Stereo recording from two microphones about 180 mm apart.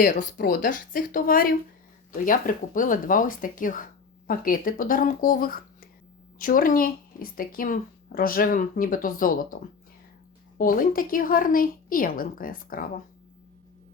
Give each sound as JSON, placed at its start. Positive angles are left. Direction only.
{"t": 0.0, "sound": "speech", "side_deg": 50}
{"t": 10.6, "sound": "speech", "side_deg": 50}